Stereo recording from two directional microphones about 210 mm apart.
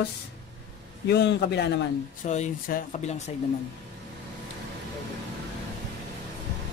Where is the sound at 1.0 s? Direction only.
55° left (ahead or behind).